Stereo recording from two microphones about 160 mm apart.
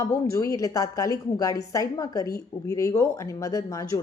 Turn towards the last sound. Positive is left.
turn(degrees=20)  # may be behind; listen again after turning